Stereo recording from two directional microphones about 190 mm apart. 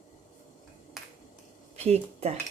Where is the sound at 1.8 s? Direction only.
35° right (ahead or behind).